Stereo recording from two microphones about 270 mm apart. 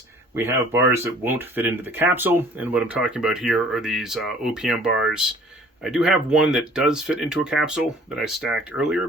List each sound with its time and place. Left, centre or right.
0.3 s speech: centre